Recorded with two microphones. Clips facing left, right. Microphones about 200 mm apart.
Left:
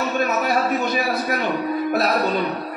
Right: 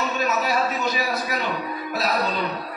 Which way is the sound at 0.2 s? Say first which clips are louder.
Left 2 dB; 55° left (ahead or behind).